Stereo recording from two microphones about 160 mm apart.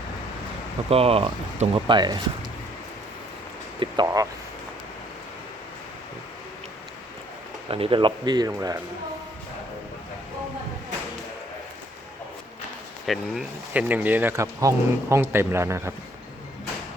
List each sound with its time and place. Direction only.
0.9 s speech: 35° right (ahead or behind)
3.8 s speech: 25° right (ahead or behind)
7.7 s speech: 35° right (ahead or behind)
13.1 s speech: 5° right (ahead or behind)